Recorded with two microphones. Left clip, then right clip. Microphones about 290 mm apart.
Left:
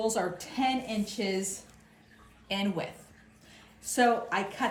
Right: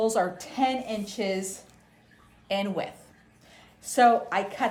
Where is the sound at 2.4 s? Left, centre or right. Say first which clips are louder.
Right 4 dB; right.